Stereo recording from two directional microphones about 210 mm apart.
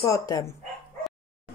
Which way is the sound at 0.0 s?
15° left (ahead or behind).